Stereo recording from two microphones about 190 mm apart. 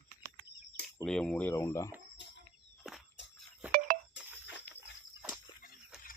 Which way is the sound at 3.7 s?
50° right (ahead or behind).